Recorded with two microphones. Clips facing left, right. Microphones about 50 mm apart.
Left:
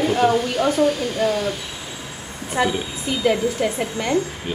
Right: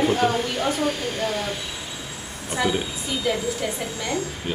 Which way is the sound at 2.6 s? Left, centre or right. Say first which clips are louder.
Left 3 dB; left.